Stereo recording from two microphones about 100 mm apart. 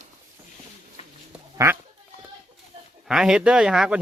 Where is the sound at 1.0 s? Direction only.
90° left.